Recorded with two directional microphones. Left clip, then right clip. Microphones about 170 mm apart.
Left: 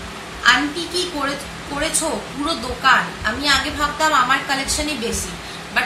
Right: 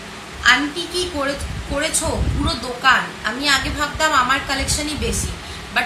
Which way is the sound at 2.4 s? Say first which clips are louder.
Even; 25° right (ahead or behind).